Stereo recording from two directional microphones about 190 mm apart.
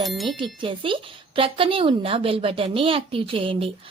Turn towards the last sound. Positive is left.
turn(degrees=-30)  # may be behind; listen again after turning